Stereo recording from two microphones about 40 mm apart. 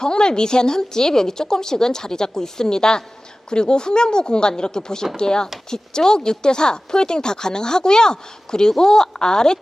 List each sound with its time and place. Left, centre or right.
0.0 s a woman's voice: centre